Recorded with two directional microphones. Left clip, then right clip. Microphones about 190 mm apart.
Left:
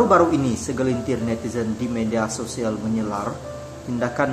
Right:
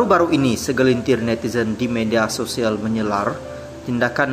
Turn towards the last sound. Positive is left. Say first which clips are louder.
# right 4 dB
turn(degrees=-20)  # may be behind; listen again after turning